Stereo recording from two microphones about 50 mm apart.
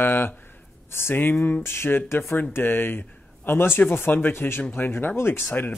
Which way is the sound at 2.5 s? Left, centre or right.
Left.